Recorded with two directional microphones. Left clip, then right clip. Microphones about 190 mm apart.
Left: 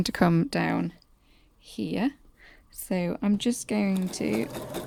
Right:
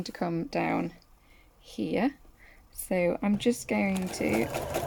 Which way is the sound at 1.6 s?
20° left (ahead or behind).